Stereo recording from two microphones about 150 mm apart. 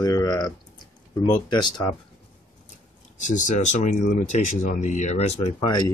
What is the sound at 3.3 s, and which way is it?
Speech, 55° left (ahead or behind).